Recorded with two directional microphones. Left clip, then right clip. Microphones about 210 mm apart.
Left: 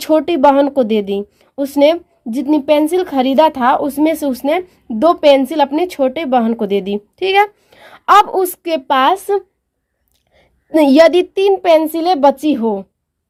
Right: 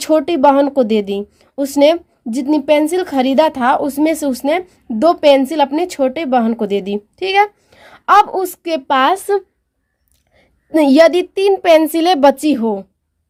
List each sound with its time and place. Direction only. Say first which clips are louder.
0.0 s speech: left 1 dB; centre (ahead or behind)